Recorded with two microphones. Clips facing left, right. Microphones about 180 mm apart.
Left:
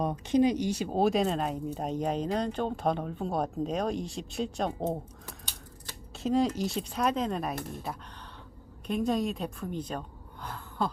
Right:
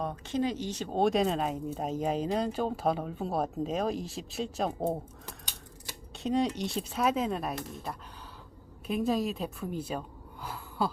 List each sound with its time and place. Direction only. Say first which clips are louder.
0.0 s speech: left 6 dB; 15° left (ahead or behind); by 4.9 s 5° right (ahead or behind)
6.1 s speech: left 2 dB; centre (ahead or behind)
8.9 s speech: even; centre (ahead or behind)
10.4 s a sound: even; 5° right (ahead or behind)